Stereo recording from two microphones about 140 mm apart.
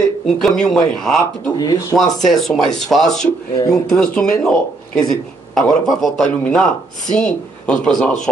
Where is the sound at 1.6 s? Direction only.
30° left (ahead or behind).